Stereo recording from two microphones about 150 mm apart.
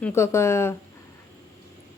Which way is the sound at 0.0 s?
20° left (ahead or behind).